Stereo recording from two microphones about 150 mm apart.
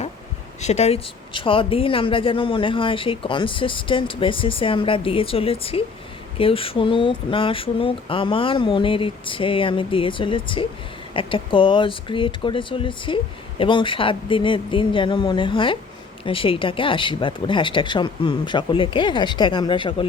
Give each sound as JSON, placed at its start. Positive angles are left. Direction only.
{"t": 0.6, "sound": "speech", "side_deg": 45}